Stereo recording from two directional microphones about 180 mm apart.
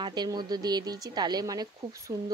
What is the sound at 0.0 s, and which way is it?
Speech, 25° right (ahead or behind).